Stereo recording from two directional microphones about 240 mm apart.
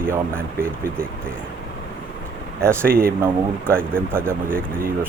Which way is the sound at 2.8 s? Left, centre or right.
Right.